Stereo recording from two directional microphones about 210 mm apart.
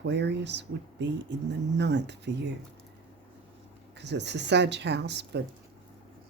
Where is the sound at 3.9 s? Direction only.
55° right (ahead or behind).